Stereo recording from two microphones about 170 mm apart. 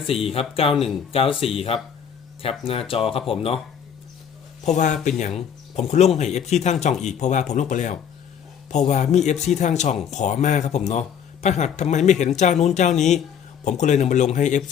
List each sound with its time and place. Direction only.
0.1 s speech: 35° left (ahead or behind)
4.6 s a man's voice: 45° left (ahead or behind)